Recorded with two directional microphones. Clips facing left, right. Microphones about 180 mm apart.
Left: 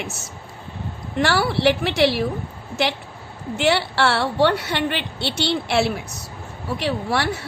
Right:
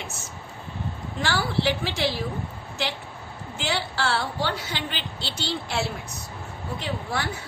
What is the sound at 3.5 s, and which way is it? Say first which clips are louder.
A woman's voice: left 9 dB; 70° left (ahead or behind).